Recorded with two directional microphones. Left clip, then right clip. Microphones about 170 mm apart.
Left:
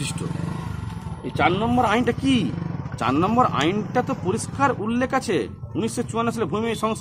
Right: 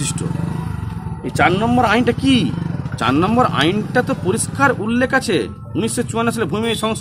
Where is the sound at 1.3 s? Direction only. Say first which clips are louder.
Right 5 dB; 10° right (ahead or behind).